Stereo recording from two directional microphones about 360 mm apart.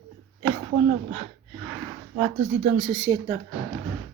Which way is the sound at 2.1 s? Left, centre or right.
Right.